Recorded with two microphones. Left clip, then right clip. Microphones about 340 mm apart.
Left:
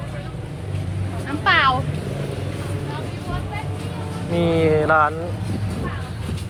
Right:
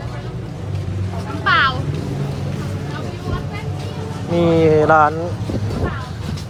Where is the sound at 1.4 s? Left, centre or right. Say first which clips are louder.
Right 1 dB; centre.